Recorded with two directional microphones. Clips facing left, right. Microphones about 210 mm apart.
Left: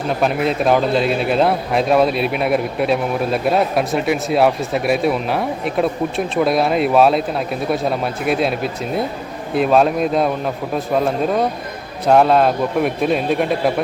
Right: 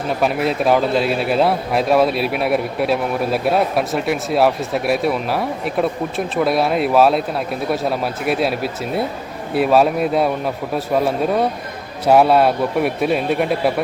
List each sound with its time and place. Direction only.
0.2 s a man's voice: 5° right (ahead or behind)